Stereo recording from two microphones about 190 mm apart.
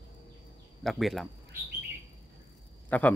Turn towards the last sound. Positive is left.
turn(degrees=10)  # may be behind; listen again after turning